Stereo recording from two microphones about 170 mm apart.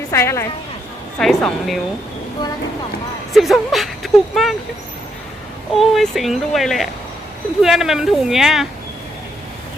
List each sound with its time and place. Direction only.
0.1 s a woman's voice: 15° left (ahead or behind)
1.2 s speech: 5° left (ahead or behind)
3.3 s speech: centre (ahead or behind)
5.7 s speech: centre (ahead or behind)